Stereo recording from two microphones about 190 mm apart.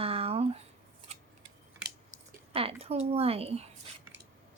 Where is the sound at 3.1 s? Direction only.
30° right (ahead or behind).